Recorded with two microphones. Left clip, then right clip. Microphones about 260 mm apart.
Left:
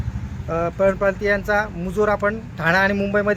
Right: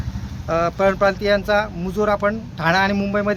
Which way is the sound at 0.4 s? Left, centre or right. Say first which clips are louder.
Right 1 dB; centre.